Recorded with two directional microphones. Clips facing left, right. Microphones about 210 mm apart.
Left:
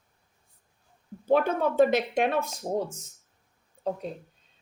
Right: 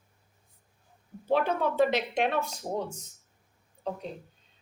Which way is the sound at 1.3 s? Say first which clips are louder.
Left 3 dB; 50° left (ahead or behind).